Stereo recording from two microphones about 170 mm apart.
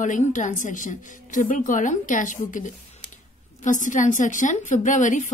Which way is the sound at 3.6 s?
50° left (ahead or behind).